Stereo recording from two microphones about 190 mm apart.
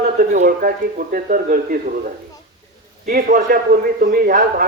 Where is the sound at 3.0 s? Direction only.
45° right (ahead or behind).